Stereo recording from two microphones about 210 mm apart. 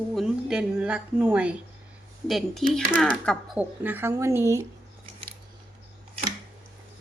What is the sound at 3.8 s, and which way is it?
Speech, 10° right (ahead or behind).